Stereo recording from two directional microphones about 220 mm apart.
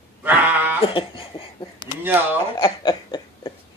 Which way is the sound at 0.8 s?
25° left (ahead or behind).